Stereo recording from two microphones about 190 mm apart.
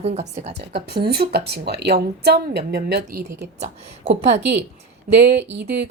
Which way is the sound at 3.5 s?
35° right (ahead or behind).